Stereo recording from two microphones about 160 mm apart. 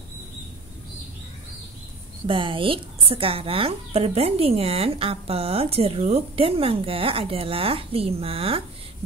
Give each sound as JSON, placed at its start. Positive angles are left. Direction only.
{"t": 2.2, "sound": "speech", "side_deg": -30}